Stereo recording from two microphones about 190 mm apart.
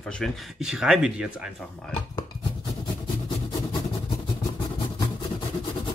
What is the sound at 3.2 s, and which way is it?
Vehicle, 25° left (ahead or behind).